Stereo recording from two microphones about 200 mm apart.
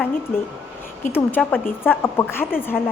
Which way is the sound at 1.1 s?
10° left (ahead or behind).